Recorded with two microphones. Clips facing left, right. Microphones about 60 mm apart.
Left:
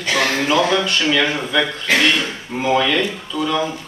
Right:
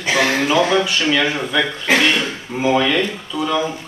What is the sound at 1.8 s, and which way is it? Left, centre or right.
A man's voice, centre.